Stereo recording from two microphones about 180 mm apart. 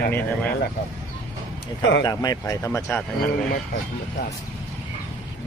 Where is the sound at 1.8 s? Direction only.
90° left.